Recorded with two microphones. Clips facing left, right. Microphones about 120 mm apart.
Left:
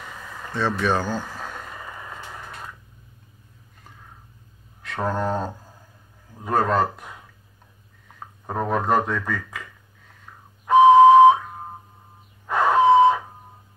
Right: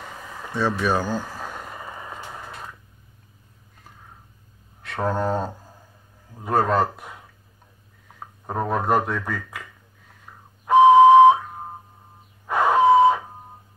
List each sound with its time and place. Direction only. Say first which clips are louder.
0.4 s a sound: right 1 dB; 10° right (ahead or behind)
1.8 s radio: right 1 dB; 20° right (ahead or behind)
4.8 s speech: right 1 dB; centre (ahead or behind)
8.5 s speech: even; 5° right (ahead or behind)
10.6 s whistle: even; 5° right (ahead or behind)
12.4 s a sound: even; 5° right (ahead or behind)